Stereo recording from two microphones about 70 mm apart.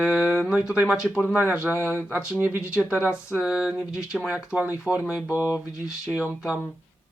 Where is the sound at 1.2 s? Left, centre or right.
Right.